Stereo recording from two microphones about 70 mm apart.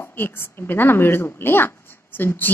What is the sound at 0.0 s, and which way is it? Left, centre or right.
A woman's voice, left.